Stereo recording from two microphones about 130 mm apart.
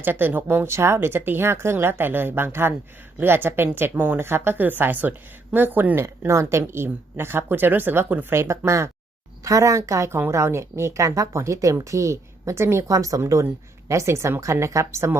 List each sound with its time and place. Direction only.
0.0 s a woman's voice: 15° right (ahead or behind)